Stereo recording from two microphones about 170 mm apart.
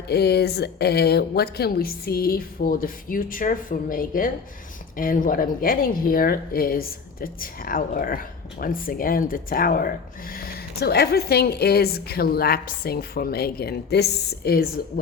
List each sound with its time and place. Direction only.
0.1 s speech: 70° left (ahead or behind)